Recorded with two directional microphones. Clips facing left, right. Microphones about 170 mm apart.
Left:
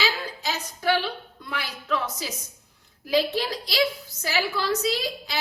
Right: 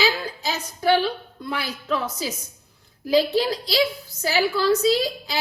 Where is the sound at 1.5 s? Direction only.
30° right (ahead or behind).